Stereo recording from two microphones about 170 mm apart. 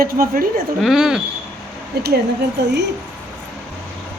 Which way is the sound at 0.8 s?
Centre (ahead or behind).